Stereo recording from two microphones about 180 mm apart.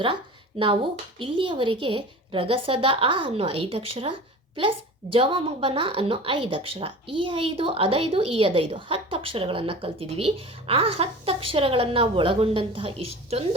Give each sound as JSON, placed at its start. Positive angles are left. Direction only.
{"t": 0.6, "sound": "speech", "side_deg": -30}